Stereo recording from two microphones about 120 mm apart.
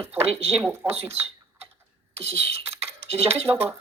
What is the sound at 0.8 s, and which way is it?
Speech, 55° right (ahead or behind).